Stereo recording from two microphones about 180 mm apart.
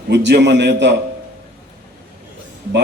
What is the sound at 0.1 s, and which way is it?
Speech, 75° right (ahead or behind).